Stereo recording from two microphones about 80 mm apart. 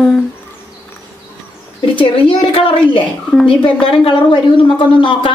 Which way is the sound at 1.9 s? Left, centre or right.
Left.